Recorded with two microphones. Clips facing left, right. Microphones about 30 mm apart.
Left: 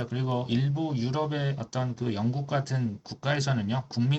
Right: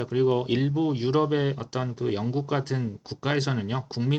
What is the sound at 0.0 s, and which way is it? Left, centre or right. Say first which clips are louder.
Speech: right 7 dB; centre.